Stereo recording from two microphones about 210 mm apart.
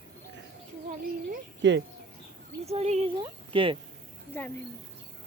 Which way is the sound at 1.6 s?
60° right (ahead or behind).